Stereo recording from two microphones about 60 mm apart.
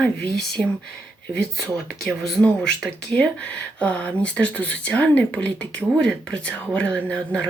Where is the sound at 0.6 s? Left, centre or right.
Centre.